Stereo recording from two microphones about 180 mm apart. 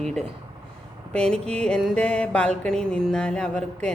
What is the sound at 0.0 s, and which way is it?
Music, 5° left (ahead or behind).